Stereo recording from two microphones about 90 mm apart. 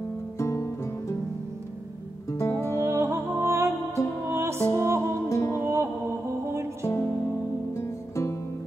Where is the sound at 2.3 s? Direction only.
35° left (ahead or behind).